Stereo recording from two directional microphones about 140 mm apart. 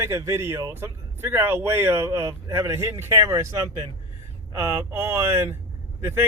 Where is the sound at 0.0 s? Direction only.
20° right (ahead or behind).